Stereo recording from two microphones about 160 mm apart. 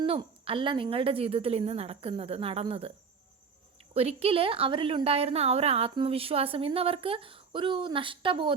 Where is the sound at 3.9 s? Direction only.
40° right (ahead or behind).